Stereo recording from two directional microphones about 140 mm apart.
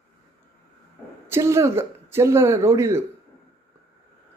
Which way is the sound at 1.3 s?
20° right (ahead or behind).